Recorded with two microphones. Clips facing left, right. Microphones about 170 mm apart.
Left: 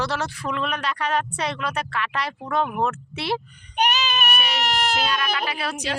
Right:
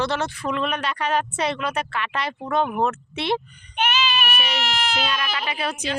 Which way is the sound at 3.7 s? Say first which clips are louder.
Even; 40° left (ahead or behind).